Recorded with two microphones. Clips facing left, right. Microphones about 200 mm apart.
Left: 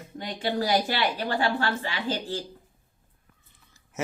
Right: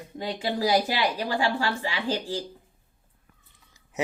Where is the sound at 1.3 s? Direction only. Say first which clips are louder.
Even; 10° right (ahead or behind).